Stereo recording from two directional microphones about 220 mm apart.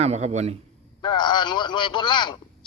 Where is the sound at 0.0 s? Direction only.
30° right (ahead or behind).